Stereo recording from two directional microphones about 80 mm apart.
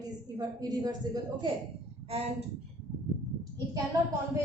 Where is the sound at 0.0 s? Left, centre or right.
Right.